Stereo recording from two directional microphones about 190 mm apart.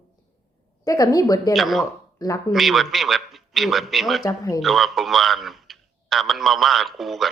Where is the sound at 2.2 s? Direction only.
20° left (ahead or behind).